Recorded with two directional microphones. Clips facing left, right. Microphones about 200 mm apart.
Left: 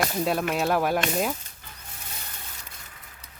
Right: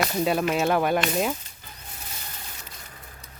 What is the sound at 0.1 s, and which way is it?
Speech, centre (ahead or behind).